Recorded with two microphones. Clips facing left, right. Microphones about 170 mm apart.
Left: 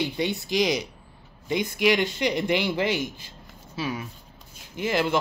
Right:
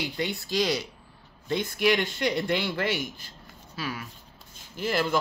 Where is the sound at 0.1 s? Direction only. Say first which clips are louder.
Left 3 dB; 20° left (ahead or behind).